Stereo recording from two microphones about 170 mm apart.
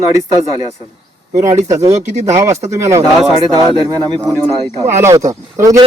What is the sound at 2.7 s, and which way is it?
Speech, 20° right (ahead or behind).